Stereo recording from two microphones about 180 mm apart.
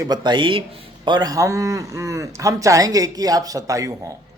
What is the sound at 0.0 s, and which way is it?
A man's voice, 25° right (ahead or behind).